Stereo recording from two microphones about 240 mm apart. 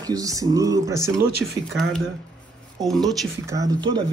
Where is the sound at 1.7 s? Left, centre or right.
Centre.